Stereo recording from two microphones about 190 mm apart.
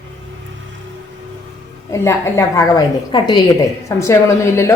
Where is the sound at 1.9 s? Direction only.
15° left (ahead or behind).